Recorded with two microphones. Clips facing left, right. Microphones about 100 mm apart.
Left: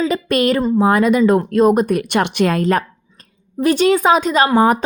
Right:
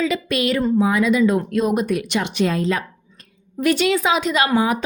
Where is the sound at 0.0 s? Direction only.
45° left (ahead or behind).